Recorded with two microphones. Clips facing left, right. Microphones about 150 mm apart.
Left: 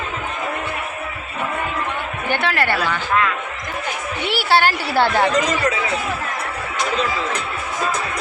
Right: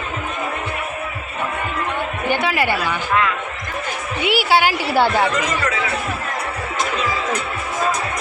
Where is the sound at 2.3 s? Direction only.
5° right (ahead or behind).